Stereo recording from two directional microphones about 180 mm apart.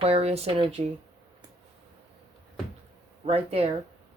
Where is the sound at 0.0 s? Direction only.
35° right (ahead or behind).